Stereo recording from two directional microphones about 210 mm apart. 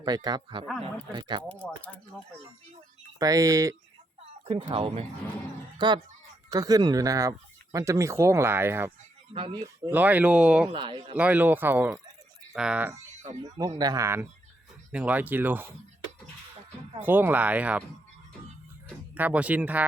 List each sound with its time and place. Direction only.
0.0 s a man's voice: 20° right (ahead or behind)
1.5 s speech: 5° left (ahead or behind)
3.2 s speech: 15° right (ahead or behind)
4.4 s a man's voice: 25° right (ahead or behind); by 8.9 s 10° right (ahead or behind)
9.3 s a man's voice: 25° right (ahead or behind)
9.9 s speech: 10° right (ahead or behind)
10.7 s a man's voice: 20° right (ahead or behind)
11.2 s speech: 10° right (ahead or behind)
13.4 s speech: 20° right (ahead or behind)
17.0 s speech: 10° right (ahead or behind)
19.1 s speech: 5° right (ahead or behind)